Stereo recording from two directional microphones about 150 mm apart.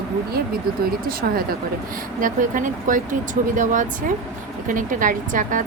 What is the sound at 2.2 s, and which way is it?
Speech, 60° right (ahead or behind).